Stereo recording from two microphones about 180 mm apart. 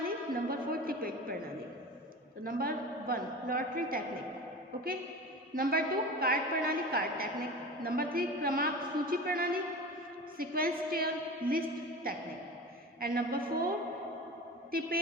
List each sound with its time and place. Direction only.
0.0 s a sound: 55° right (ahead or behind)
2.4 s a man's voice: 55° right (ahead or behind)
5.5 s a woman's voice: 55° right (ahead or behind)
13.0 s a woman's voice: 55° right (ahead or behind)
14.7 s a woman's voice: 55° right (ahead or behind)